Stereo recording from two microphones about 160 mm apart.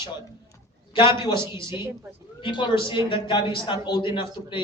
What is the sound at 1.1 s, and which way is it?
A man's voice, 30° left (ahead or behind).